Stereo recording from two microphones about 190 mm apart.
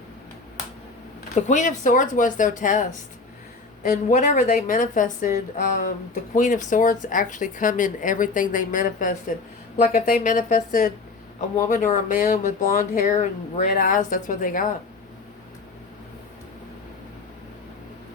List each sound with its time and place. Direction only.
1.4 s speech: 40° left (ahead or behind)
4.1 s speech: 40° left (ahead or behind)